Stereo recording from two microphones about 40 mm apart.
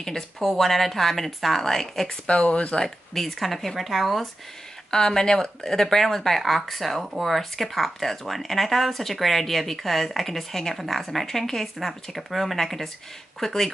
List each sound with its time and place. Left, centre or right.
0.0 s a woman's voice: centre
2.0 s speech: left
2.8 s speech: centre
4.9 s a woman's voice: centre